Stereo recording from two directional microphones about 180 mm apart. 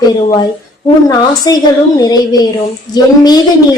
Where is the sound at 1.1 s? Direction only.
20° left (ahead or behind).